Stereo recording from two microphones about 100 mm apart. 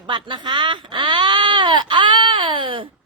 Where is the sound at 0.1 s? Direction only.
50° right (ahead or behind).